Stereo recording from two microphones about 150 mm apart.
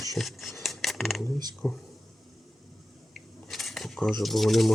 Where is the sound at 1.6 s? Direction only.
15° left (ahead or behind).